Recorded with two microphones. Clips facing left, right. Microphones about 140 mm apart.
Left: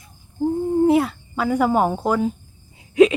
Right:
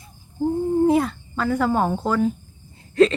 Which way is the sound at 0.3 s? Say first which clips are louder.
Left 1 dB; centre (ahead or behind).